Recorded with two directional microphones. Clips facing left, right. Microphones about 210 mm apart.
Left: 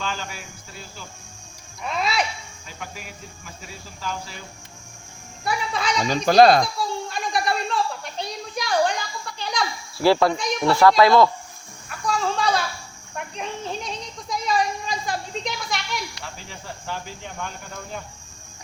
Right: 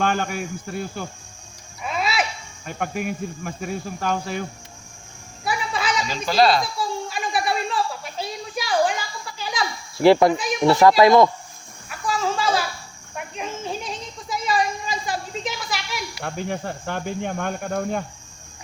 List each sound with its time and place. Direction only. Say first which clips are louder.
0.0 s speech: right 9 dB; 55° right (ahead or behind)
1.8 s music: even; 5° right (ahead or behind)
2.6 s speech: right 12 dB; 55° right (ahead or behind)
5.5 s a sound: even; 5° right (ahead or behind)
6.1 s speech: left 5 dB; 50° left (ahead or behind)
6.7 s a sound: right 1 dB; 5° right (ahead or behind)
10.0 s speech: right 4 dB; 20° right (ahead or behind)
11.9 s goat: even; 5° right (ahead or behind)
13.1 s a sound: right 1 dB; 5° right (ahead or behind)
16.2 s speech: right 10 dB; 55° right (ahead or behind)